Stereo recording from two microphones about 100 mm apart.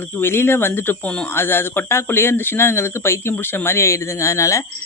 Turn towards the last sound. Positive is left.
turn(degrees=30)  # may be behind; listen again after turning